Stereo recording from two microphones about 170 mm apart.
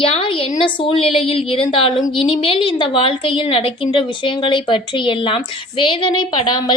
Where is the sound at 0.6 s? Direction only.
30° left (ahead or behind).